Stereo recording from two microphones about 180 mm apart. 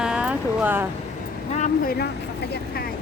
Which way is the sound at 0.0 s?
5° right (ahead or behind).